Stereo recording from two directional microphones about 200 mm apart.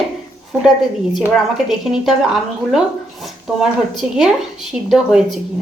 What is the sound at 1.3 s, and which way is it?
Speech, centre (ahead or behind).